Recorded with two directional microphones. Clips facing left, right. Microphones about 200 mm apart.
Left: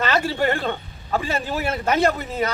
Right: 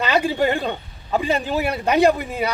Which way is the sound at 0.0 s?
15° right (ahead or behind).